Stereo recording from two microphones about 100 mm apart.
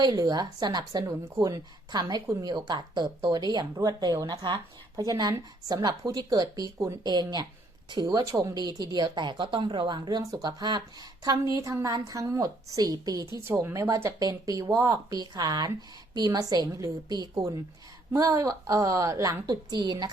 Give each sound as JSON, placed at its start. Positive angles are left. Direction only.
{"t": 0.0, "sound": "a woman's voice", "side_deg": -40}
{"t": 4.3, "sound": "a woman's voice", "side_deg": -55}
{"t": 4.9, "sound": "a woman's voice", "side_deg": -40}
{"t": 13.4, "sound": "speech", "side_deg": -25}
{"t": 13.9, "sound": "speech", "side_deg": -35}
{"t": 19.5, "sound": "a woman's voice", "side_deg": -45}